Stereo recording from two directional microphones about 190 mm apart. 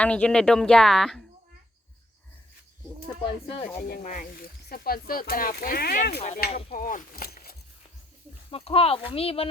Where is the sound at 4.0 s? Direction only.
45° left (ahead or behind).